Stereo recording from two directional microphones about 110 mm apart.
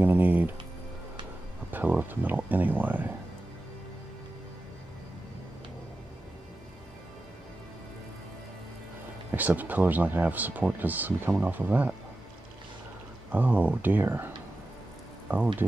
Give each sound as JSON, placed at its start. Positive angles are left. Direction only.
{"t": 0.0, "sound": "speech", "side_deg": -15}
{"t": 1.7, "sound": "speech", "side_deg": -15}
{"t": 9.3, "sound": "speech", "side_deg": -15}
{"t": 13.3, "sound": "speech", "side_deg": -15}